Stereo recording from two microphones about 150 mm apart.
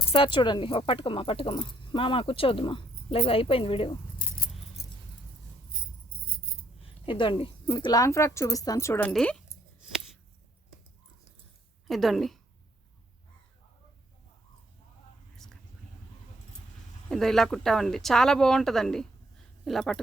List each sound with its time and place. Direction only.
0.1 s speech: 35° left (ahead or behind)
4.8 s a sound: 90° left
7.0 s a woman's voice: 35° left (ahead or behind); by 9.4 s 5° left (ahead or behind)
11.9 s speech: centre (ahead or behind)
17.1 s speech: centre (ahead or behind)